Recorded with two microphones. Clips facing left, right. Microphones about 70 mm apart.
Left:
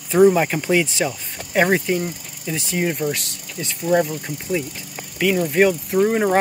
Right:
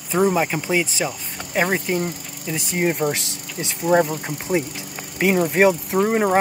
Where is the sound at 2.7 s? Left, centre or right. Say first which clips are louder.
Right 2 dB; right.